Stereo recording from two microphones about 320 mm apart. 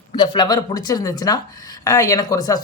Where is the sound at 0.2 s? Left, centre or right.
Centre.